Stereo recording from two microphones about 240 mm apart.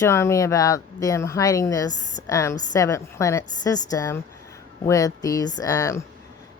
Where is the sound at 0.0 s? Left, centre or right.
Centre.